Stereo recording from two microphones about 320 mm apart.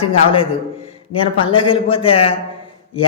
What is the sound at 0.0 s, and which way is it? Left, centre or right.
Speech, centre.